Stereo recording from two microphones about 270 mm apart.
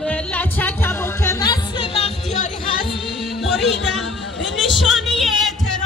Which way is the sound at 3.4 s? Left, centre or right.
Centre.